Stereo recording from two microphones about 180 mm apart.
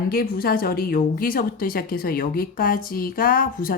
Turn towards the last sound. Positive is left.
turn(degrees=50)  # may be behind; listen again after turning